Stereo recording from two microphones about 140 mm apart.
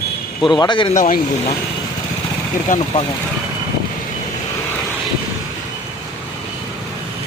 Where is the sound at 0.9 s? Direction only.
65° left (ahead or behind).